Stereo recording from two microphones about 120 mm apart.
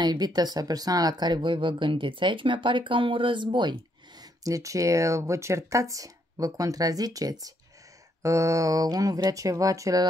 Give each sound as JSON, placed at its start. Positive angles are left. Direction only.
{"t": 0.0, "sound": "speech", "side_deg": -35}